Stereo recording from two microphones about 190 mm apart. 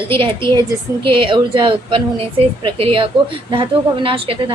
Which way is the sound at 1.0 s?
25° right (ahead or behind).